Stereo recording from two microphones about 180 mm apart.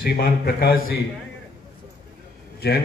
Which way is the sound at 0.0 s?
60° left (ahead or behind).